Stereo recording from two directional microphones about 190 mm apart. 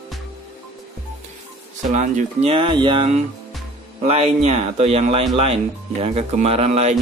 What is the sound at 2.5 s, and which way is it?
Speech, 25° right (ahead or behind).